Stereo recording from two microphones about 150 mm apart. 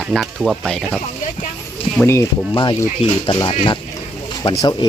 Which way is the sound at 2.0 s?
20° left (ahead or behind).